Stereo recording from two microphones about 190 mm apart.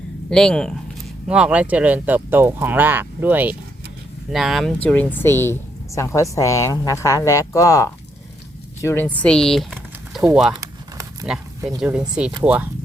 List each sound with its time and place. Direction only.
0.3 s speech: 5° left (ahead or behind)
10.5 s a sound: 20° right (ahead or behind)
11.8 s speech: 5° right (ahead or behind)